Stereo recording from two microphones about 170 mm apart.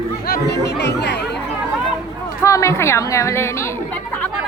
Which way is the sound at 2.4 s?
20° left (ahead or behind).